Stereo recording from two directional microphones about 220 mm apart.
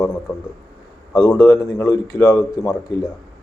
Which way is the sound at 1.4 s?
15° left (ahead or behind).